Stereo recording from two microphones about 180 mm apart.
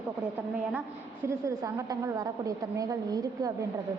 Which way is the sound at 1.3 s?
20° right (ahead or behind).